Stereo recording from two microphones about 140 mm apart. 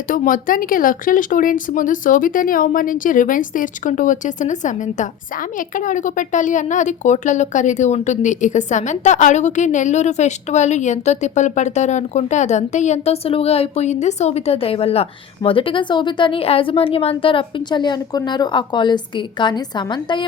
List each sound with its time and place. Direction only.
0.1 s a woman's voice: 75° left (ahead or behind); by 20.2 s 35° left (ahead or behind)